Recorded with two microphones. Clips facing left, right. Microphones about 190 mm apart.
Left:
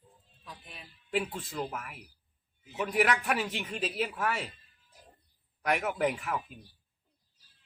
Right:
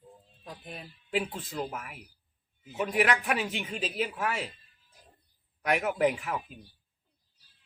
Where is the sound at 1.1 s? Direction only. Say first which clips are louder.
Right 1 dB; centre (ahead or behind).